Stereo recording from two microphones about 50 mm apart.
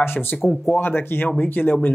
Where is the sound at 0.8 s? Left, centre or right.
Left.